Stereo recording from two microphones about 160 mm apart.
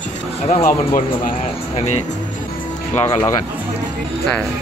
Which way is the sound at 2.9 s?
15° left (ahead or behind).